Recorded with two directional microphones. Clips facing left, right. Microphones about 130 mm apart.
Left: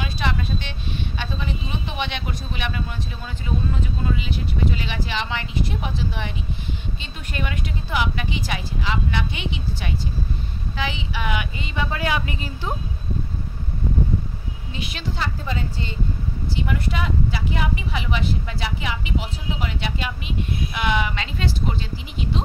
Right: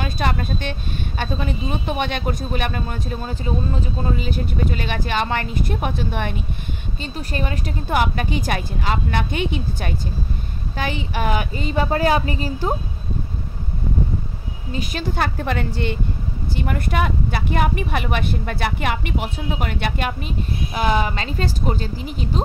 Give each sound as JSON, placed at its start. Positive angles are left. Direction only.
{"t": 0.0, "sound": "speech", "side_deg": -45}
{"t": 7.0, "sound": "speech", "side_deg": -40}
{"t": 14.7, "sound": "a woman's voice", "side_deg": -45}
{"t": 16.5, "sound": "speech", "side_deg": -50}